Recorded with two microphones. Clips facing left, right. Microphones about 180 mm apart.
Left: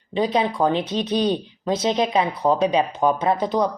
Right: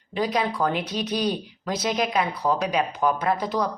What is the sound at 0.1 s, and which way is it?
Speech, 25° left (ahead or behind).